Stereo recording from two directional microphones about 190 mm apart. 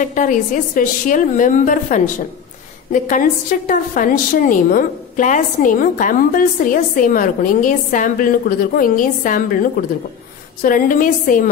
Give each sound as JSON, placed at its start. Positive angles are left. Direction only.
{"t": 0.0, "sound": "a woman's voice", "side_deg": 40}